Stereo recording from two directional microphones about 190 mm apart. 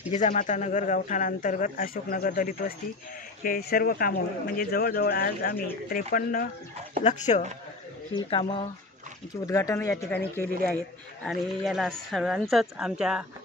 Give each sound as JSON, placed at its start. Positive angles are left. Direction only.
{"t": 0.1, "sound": "speech", "side_deg": 40}
{"t": 8.3, "sound": "speech", "side_deg": 30}
{"t": 9.5, "sound": "speech", "side_deg": 15}
{"t": 11.2, "sound": "a woman's voice", "side_deg": 0}